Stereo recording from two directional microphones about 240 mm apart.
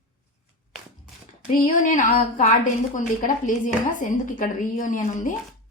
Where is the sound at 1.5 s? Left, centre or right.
Left.